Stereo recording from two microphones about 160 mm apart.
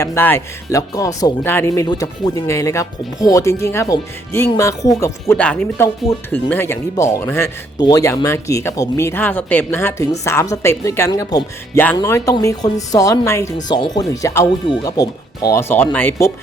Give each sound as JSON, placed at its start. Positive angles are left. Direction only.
{"t": 0.0, "sound": "speech", "side_deg": 15}
{"t": 5.3, "sound": "speech", "side_deg": 5}